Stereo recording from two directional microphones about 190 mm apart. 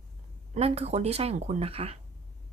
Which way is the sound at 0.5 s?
35° right (ahead or behind).